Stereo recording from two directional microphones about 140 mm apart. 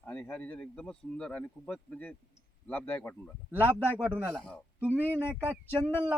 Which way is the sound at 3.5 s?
15° right (ahead or behind).